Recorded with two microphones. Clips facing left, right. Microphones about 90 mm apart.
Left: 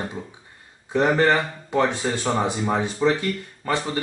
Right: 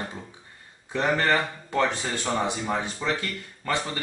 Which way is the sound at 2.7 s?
20° left (ahead or behind).